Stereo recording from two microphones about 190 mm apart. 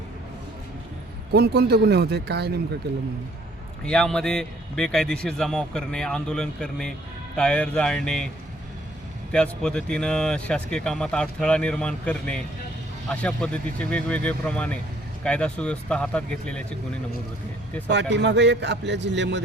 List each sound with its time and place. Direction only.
1.3 s speech: 60° right (ahead or behind)
3.8 s a man's voice: 5° left (ahead or behind)
9.3 s a man's voice: 5° left (ahead or behind)
17.8 s a man's voice: 65° right (ahead or behind)